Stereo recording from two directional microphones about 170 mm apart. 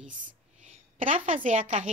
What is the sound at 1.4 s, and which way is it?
Speech, 45° right (ahead or behind).